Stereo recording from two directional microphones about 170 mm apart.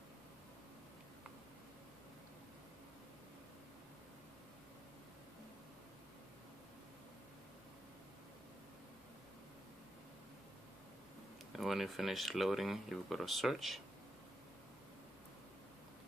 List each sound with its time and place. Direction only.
11.5 s speech: centre (ahead or behind)